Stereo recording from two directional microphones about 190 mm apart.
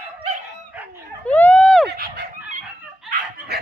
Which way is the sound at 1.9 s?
55° right (ahead or behind).